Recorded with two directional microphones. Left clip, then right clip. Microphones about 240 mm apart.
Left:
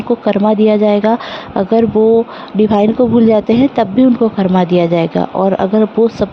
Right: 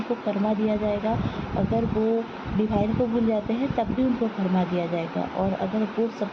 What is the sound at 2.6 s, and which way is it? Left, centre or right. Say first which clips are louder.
Speech: left 14 dB; left.